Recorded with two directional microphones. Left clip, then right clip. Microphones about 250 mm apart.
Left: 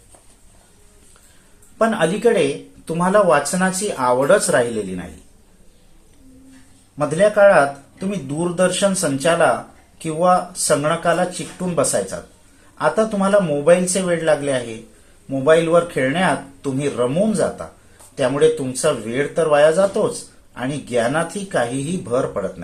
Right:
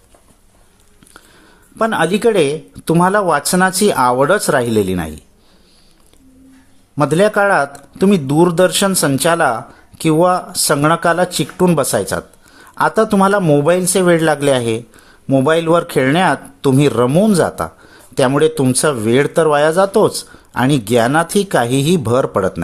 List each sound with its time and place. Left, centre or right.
1.8 s speech: right
6.9 s speech: right